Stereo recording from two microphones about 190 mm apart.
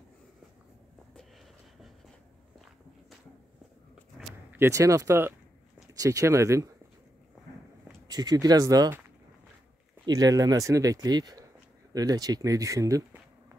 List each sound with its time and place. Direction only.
4.2 s a sound: centre (ahead or behind)
4.6 s speech: 15° right (ahead or behind)
8.1 s speech: 20° right (ahead or behind)
10.0 s speech: 20° right (ahead or behind)